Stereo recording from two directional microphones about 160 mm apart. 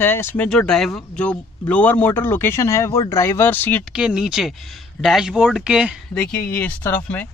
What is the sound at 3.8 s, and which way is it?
Speech, 5° right (ahead or behind).